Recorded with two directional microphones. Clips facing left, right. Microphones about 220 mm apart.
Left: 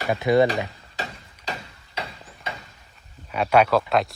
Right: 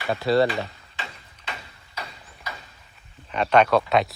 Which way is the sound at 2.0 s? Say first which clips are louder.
Left 4 dB; 30° left (ahead or behind).